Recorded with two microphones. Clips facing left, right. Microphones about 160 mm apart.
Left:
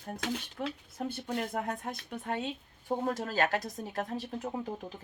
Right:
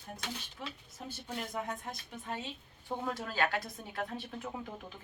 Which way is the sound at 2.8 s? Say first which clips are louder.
Left 5 dB; 40° left (ahead or behind).